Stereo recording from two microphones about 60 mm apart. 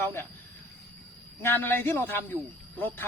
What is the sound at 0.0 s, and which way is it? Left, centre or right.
Speech, left.